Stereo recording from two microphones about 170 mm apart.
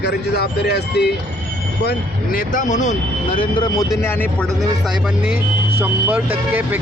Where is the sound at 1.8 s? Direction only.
55° left (ahead or behind).